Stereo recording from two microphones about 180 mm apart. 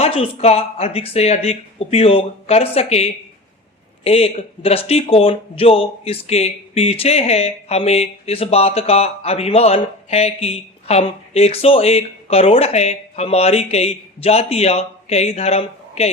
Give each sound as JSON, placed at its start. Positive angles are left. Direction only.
{"t": 0.0, "sound": "speech", "side_deg": 35}